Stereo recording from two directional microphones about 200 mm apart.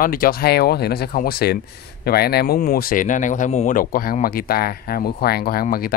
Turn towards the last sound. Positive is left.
turn(degrees=50)  # may be behind; listen again after turning